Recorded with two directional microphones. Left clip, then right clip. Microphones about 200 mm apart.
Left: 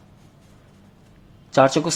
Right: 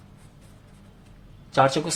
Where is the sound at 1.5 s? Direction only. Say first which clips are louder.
Left 4 dB; 30° left (ahead or behind).